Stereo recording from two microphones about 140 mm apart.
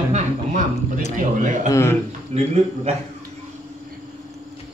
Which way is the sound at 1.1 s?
65° right (ahead or behind).